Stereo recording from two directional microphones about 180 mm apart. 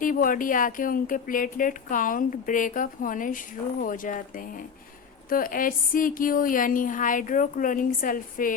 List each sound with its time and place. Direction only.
0.0 s speech: 50° left (ahead or behind)